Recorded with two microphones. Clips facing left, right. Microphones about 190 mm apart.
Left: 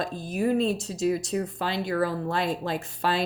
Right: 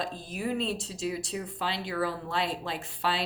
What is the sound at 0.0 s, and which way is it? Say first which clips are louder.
Speech: left 7 dB; 45° left (ahead or behind).